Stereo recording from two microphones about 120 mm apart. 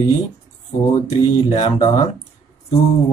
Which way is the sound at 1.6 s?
50° left (ahead or behind).